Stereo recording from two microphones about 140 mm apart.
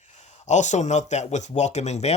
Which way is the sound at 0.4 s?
55° left (ahead or behind).